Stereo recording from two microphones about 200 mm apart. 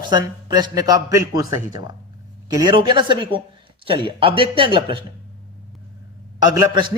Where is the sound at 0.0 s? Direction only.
20° right (ahead or behind).